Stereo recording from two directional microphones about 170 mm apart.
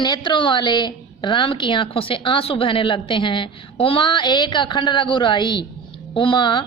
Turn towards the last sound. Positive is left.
turn(degrees=30)  # may be behind; listen again after turning